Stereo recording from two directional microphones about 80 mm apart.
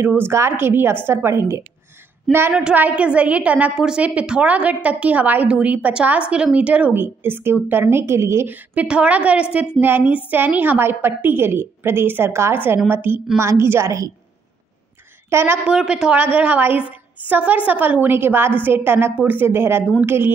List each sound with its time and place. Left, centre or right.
0.0 s a woman's voice: right
2.3 s a woman's voice: centre
2.7 s a woman's voice: centre; by 14.1 s right
15.2 s a woman's voice: right
15.6 s a woman's voice: centre; by 20.3 s right